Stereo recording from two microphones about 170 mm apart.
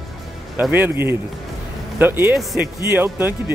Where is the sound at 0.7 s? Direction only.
10° right (ahead or behind).